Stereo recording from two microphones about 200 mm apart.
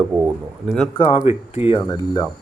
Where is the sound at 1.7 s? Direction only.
20° left (ahead or behind).